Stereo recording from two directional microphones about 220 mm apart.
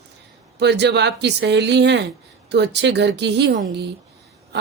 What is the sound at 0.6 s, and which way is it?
A woman's voice, 50° right (ahead or behind).